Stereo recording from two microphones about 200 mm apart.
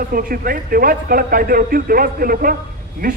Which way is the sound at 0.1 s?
45° right (ahead or behind).